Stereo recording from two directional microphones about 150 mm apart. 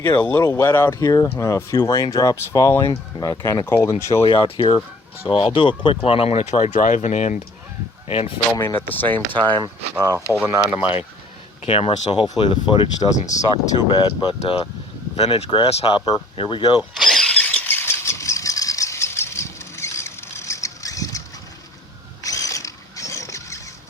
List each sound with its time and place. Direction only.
0.2 s speech: 15° left (ahead or behind)
4.2 s speech: 35° left (ahead or behind)
8.5 s speech: 15° left (ahead or behind)
10.0 s speech: 20° right (ahead or behind)
11.6 s speech: 40° left (ahead or behind)
13.1 s speech: 55° left (ahead or behind)
13.9 s speech: 30° left (ahead or behind)
15.1 s speech: 45° left (ahead or behind)
17.0 s squeal: centre (ahead or behind); by 21.2 s 20° left (ahead or behind)
22.2 s mechanisms: 20° left (ahead or behind)